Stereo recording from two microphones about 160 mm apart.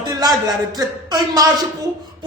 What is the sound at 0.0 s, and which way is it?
Speech, 25° right (ahead or behind).